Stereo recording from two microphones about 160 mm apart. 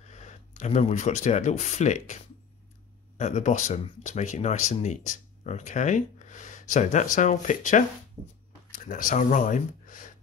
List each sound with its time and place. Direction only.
0.1 s speech: 45° left (ahead or behind)
3.2 s speech: 45° left (ahead or behind)